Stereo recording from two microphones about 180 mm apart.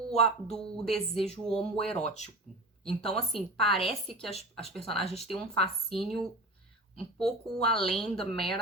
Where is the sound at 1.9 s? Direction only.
35° left (ahead or behind).